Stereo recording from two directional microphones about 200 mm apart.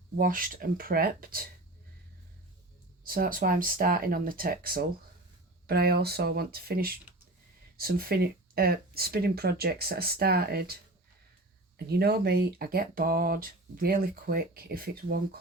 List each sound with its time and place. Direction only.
0.2 s speech: 45° right (ahead or behind)
3.1 s speech: 45° right (ahead or behind)
11.9 s speech: 50° right (ahead or behind)